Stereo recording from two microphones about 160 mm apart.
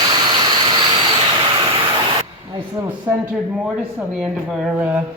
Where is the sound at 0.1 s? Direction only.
25° right (ahead or behind).